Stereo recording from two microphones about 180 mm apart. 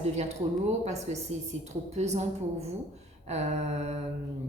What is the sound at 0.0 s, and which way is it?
A woman's voice, 40° right (ahead or behind).